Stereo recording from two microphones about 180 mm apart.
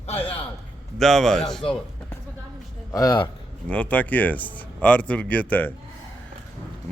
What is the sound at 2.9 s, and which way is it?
Speech, 20° left (ahead or behind).